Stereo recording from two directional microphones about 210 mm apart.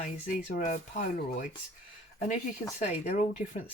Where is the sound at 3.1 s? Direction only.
35° left (ahead or behind).